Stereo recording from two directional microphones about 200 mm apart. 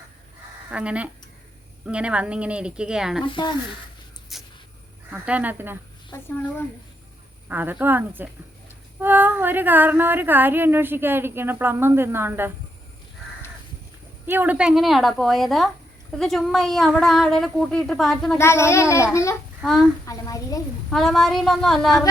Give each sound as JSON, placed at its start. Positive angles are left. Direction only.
{"t": 0.7, "sound": "speech", "side_deg": -5}
{"t": 3.2, "sound": "speech", "side_deg": 25}
{"t": 4.3, "sound": "a sound", "side_deg": 0}
{"t": 5.1, "sound": "speech", "side_deg": -5}
{"t": 7.4, "sound": "speech", "side_deg": -10}
{"t": 14.3, "sound": "speech", "side_deg": -10}
{"t": 18.3, "sound": "a child's voice", "side_deg": 15}
{"t": 19.6, "sound": "speech", "side_deg": 0}
{"t": 20.1, "sound": "a child's voice", "side_deg": 15}
{"t": 20.9, "sound": "speech", "side_deg": 0}